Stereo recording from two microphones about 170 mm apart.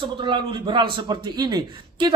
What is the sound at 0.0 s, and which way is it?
A man's voice, 30° right (ahead or behind).